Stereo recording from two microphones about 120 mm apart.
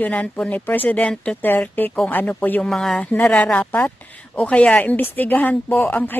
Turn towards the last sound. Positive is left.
turn(degrees=15)  # may be behind; listen again after turning